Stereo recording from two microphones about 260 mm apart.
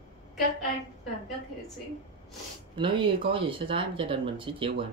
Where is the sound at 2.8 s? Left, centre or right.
Centre.